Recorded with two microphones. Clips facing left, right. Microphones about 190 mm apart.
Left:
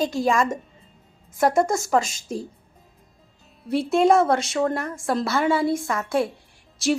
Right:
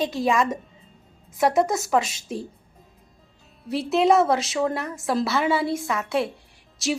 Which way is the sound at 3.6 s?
Centre (ahead or behind).